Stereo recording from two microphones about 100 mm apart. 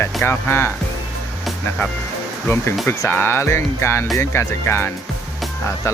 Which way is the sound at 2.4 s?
20° left (ahead or behind).